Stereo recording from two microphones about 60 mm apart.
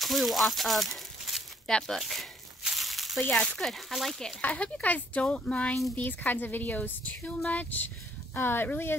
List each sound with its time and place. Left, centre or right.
0.0 s speech: centre
1.7 s speech: centre
2.6 s a sound: centre
3.2 s a woman's voice: left
3.4 s speech: centre
4.4 s a woman's voice: left
5.9 s a woman's voice: left